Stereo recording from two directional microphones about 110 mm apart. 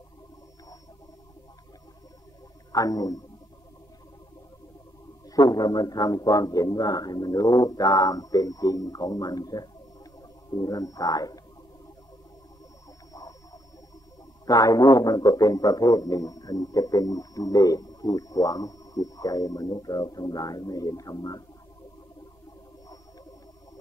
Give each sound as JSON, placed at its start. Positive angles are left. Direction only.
{"t": 2.7, "sound": "a man's voice", "side_deg": 35}
{"t": 5.3, "sound": "a man's voice", "side_deg": 35}
{"t": 13.1, "sound": "a sound", "side_deg": 30}
{"t": 14.4, "sound": "a man's voice", "side_deg": 35}